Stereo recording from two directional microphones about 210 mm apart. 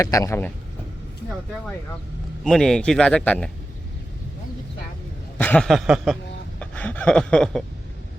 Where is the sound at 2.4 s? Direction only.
5° left (ahead or behind).